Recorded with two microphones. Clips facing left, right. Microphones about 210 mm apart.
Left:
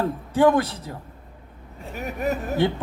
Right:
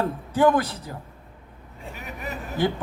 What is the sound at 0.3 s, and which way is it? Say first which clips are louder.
Speech: left 2 dB; 25° left (ahead or behind).